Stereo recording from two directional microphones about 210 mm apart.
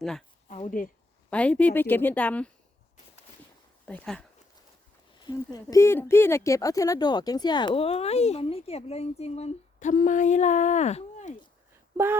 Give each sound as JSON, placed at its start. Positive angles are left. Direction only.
{"t": 0.0, "sound": "a woman's voice", "side_deg": 0}
{"t": 0.4, "sound": "speech", "side_deg": 30}
{"t": 1.3, "sound": "a woman's voice", "side_deg": 5}
{"t": 3.8, "sound": "speech", "side_deg": 5}
{"t": 5.2, "sound": "speech", "side_deg": 20}